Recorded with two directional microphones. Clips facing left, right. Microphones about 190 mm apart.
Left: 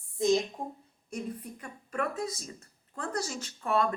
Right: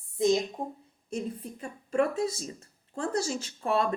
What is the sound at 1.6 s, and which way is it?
Speech, 25° right (ahead or behind).